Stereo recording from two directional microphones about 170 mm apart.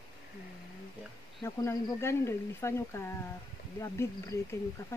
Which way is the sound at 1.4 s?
15° left (ahead or behind).